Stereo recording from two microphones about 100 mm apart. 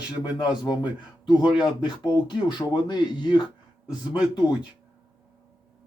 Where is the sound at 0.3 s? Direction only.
45° left (ahead or behind).